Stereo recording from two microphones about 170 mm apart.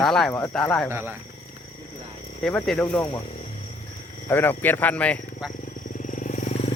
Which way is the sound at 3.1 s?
30° left (ahead or behind).